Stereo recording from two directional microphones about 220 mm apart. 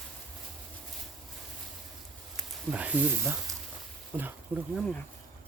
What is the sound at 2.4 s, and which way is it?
Speech, 5° right (ahead or behind).